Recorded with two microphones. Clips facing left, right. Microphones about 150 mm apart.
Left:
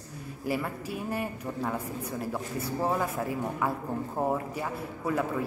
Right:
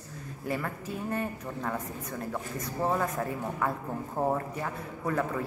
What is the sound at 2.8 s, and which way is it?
A man's voice, 5° left (ahead or behind).